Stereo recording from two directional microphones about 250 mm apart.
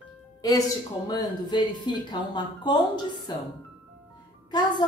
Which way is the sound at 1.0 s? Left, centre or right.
Centre.